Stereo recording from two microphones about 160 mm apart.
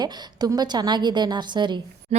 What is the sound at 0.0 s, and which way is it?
A woman's voice, 25° right (ahead or behind).